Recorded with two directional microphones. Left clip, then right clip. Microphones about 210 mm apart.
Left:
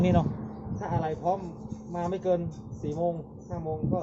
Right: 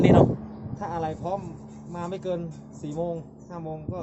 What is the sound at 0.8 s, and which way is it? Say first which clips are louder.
Music: right 1 dB; 55° right (ahead or behind).